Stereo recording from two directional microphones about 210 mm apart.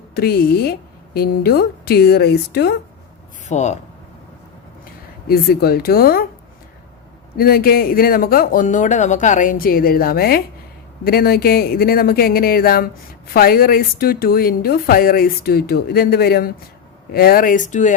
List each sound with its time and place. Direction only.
0.1 s speech: 50° left (ahead or behind)
3.4 s speech: 35° left (ahead or behind)
5.3 s speech: 45° left (ahead or behind)
7.3 s speech: 45° left (ahead or behind)